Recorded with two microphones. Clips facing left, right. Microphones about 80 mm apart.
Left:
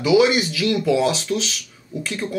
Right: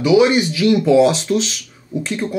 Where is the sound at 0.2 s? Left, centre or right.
Centre.